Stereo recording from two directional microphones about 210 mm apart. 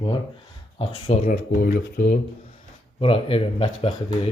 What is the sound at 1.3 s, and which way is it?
Speech, 45° left (ahead or behind).